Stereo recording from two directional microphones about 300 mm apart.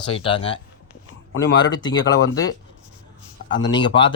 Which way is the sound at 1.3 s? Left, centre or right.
Left.